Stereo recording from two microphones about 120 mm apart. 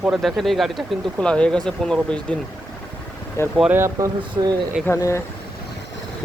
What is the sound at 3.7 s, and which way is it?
Speech, 20° right (ahead or behind).